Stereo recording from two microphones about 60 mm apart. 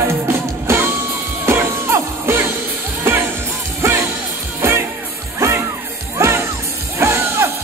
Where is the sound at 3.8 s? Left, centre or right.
Right.